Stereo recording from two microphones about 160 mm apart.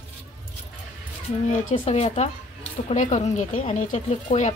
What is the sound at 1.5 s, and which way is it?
Speech, 50° left (ahead or behind).